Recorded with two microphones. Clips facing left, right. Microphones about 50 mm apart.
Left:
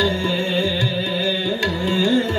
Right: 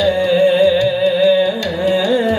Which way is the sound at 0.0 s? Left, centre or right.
Centre.